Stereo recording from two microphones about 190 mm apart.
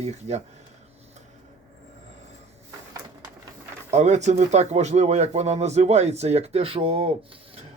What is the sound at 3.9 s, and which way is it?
Speech, 35° right (ahead or behind).